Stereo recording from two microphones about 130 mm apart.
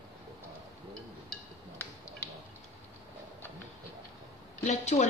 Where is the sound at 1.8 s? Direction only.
20° left (ahead or behind).